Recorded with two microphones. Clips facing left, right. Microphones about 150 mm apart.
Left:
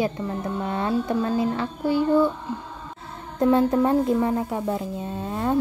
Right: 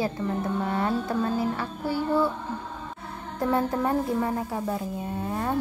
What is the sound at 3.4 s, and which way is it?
Speech, 20° left (ahead or behind).